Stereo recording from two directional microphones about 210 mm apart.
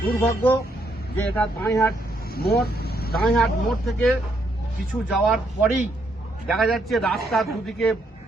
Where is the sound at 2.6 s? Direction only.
45° left (ahead or behind).